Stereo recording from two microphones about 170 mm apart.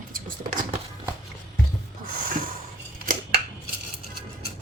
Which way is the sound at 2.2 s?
55° right (ahead or behind).